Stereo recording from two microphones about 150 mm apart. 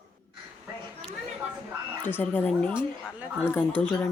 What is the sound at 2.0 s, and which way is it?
Speech, 10° left (ahead or behind).